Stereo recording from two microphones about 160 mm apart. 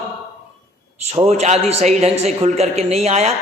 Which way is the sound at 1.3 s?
45° right (ahead or behind).